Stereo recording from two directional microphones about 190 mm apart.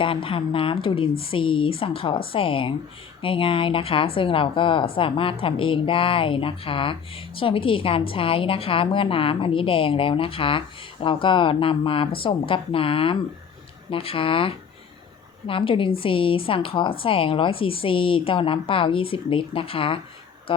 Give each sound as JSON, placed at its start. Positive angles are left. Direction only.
{"t": 0.0, "sound": "a woman's voice", "side_deg": 25}